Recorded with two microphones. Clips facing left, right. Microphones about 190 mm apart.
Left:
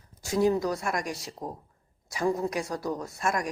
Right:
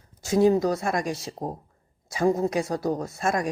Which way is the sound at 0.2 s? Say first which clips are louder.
Right 5 dB; 25° right (ahead or behind).